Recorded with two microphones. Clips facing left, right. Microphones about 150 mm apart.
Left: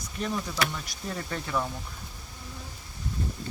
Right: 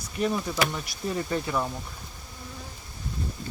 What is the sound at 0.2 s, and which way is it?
Speech, 10° right (ahead or behind).